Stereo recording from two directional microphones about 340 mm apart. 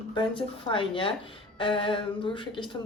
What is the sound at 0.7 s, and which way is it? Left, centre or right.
Speech, centre.